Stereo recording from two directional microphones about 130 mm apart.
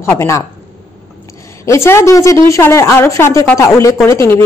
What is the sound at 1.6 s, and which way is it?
A woman's voice, 20° left (ahead or behind).